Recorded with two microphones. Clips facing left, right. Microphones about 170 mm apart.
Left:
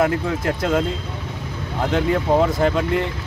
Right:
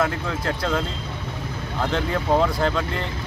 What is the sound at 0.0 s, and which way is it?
Speech, 15° left (ahead or behind).